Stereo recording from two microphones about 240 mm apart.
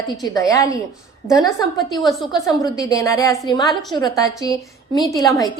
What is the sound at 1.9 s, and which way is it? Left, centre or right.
Speech, centre.